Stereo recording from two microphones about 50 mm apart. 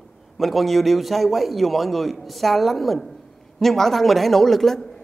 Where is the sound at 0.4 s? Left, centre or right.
Centre.